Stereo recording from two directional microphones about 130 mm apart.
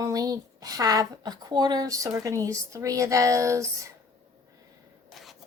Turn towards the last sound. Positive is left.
turn(degrees=-25)  # may be behind; listen again after turning